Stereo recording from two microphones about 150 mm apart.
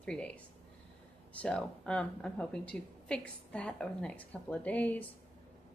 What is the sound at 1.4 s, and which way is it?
A woman's voice, 5° left (ahead or behind).